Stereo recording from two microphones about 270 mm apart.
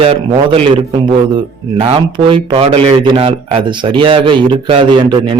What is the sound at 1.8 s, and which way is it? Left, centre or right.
A man's voice, centre.